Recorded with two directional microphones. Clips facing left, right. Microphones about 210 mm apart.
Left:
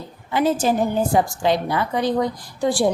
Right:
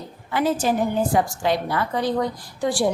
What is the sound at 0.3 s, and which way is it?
Speech, 20° left (ahead or behind).